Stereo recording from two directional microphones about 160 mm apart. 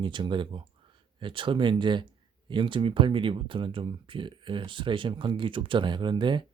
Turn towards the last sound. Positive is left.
turn(degrees=-30)  # may be behind; listen again after turning